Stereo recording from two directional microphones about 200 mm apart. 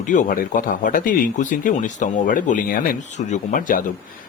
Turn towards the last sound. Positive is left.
turn(degrees=45)  # may be behind; listen again after turning